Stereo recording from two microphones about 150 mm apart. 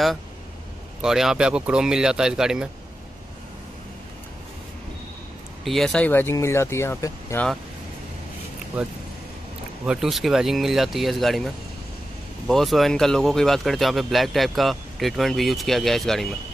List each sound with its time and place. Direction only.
1.0 s speech: 5° right (ahead or behind)
5.6 s speech: centre (ahead or behind); by 7.4 s 15° left (ahead or behind)
9.8 s speech: centre (ahead or behind)